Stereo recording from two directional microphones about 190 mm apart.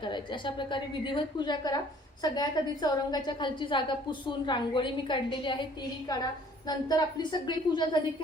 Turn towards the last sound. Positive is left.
turn(degrees=25)  # may be behind; listen again after turning